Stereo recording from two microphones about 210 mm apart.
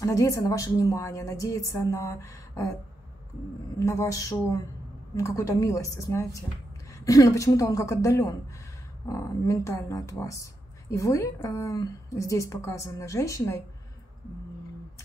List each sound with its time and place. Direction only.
0.0 s speech: 15° left (ahead or behind)
3.8 s speech: 15° left (ahead or behind)